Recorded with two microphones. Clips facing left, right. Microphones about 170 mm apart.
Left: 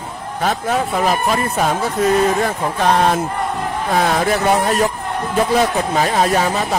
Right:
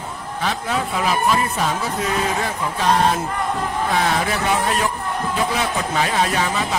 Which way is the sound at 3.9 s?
45° left (ahead or behind).